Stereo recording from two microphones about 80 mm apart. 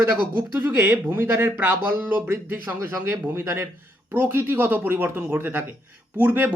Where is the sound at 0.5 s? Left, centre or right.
Right.